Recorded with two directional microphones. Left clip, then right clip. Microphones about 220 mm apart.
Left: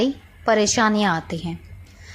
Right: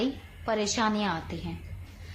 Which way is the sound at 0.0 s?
35° left (ahead or behind).